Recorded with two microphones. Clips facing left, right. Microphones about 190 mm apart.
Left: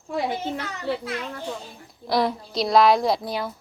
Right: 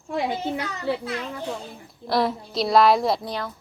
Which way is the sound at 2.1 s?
Centre (ahead or behind).